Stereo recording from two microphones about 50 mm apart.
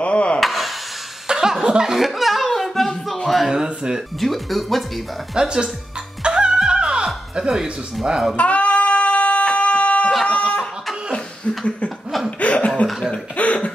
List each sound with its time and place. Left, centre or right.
0.0 s wood: left
0.4 s wood: centre
1.2 s a sound: centre
3.5 s speech: centre
4.2 s speech: centre
5.3 s speech: centre
6.2 s music: centre
7.3 s speech: centre
8.4 s music: left
9.5 s a sound: left
12.3 s laughter: left
13.4 s cough: left